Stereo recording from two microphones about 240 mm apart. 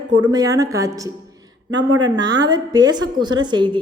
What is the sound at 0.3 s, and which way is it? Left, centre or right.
Speech, centre.